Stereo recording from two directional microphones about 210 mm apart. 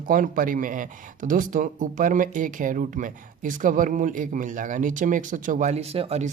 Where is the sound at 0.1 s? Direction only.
40° right (ahead or behind).